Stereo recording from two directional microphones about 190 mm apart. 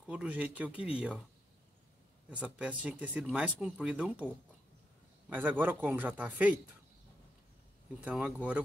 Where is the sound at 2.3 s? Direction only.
5° right (ahead or behind).